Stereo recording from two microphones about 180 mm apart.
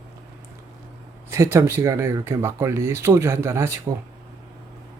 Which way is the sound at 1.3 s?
15° right (ahead or behind).